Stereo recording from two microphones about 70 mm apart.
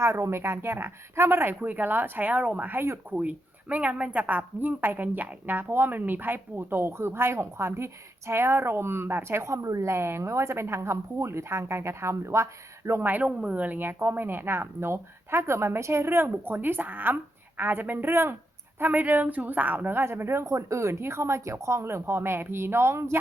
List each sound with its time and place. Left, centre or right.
0.0 s speech: right
2.7 s speech: right
3.1 s speech: right
13.0 s speech: right